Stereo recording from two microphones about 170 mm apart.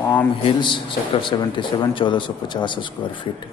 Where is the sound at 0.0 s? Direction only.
10° left (ahead or behind).